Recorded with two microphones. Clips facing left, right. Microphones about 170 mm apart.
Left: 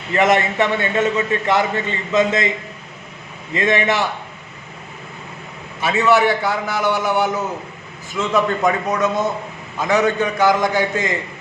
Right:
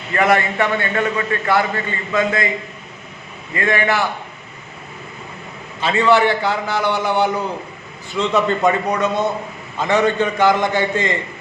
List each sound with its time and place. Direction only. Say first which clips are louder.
0.1 s a man's voice: left 1 dB; 20° left (ahead or behind)
3.5 s a man's voice: left 1 dB; 25° left (ahead or behind)
5.8 s a man's voice: right 1 dB; 5° left (ahead or behind)